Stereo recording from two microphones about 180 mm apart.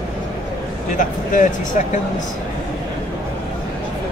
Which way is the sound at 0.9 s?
45° left (ahead or behind).